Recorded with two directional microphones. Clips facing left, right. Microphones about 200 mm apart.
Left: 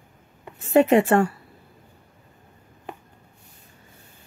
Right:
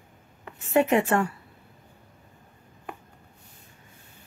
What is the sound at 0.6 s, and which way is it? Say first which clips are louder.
Speech: left 5 dB; 35° left (ahead or behind).